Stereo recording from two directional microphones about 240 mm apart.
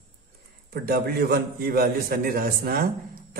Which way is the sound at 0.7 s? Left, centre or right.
Right.